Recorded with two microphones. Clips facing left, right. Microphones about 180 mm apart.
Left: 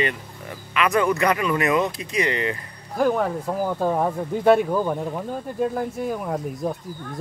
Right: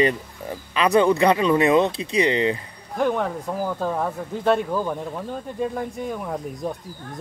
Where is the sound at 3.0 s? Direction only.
5° left (ahead or behind).